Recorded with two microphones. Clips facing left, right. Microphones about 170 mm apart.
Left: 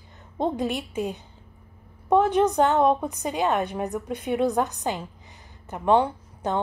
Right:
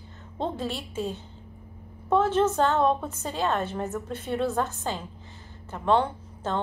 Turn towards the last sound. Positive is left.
turn(degrees=15)  # may be behind; listen again after turning